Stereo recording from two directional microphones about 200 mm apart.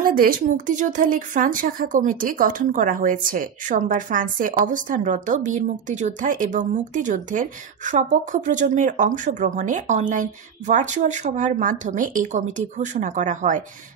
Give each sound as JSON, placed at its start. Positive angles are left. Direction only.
{"t": 0.0, "sound": "a woman's voice", "side_deg": -45}